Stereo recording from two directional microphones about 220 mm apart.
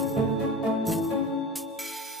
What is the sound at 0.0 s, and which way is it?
Music, centre (ahead or behind).